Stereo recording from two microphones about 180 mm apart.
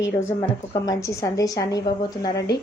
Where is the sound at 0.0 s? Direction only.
15° left (ahead or behind).